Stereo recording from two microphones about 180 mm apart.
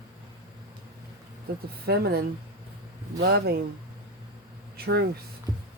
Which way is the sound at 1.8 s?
60° right (ahead or behind).